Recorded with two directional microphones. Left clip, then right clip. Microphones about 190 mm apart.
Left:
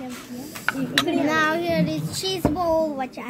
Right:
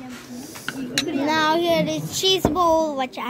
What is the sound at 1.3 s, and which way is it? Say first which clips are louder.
A child's voice: right 2 dB; 20° right (ahead or behind).